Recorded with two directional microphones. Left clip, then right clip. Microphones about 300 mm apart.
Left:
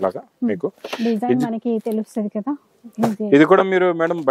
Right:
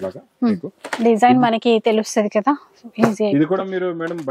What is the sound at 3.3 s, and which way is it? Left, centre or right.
Speech, centre.